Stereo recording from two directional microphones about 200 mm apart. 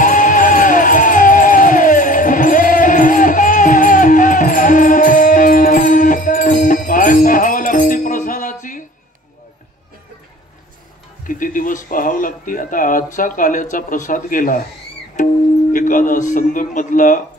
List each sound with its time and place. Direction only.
0.0 s music: 40° left (ahead or behind)
11.2 s speech: 40° left (ahead or behind)